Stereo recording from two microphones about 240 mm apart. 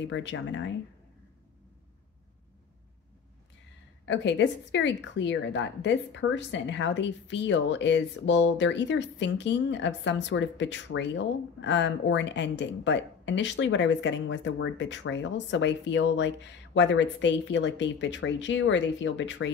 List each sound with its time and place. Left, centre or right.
0.1 s a woman's voice: left
4.0 s a woman's voice: left